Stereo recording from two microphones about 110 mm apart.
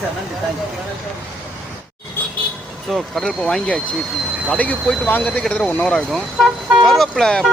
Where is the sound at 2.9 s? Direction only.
Centre (ahead or behind).